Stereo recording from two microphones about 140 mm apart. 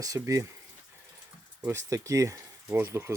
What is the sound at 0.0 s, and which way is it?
Speech, 25° right (ahead or behind).